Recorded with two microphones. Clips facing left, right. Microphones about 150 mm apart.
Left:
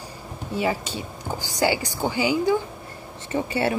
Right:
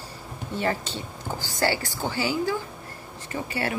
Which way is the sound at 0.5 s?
10° left (ahead or behind).